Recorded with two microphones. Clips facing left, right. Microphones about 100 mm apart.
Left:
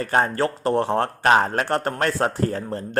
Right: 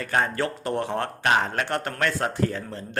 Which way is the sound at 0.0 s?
35° left (ahead or behind).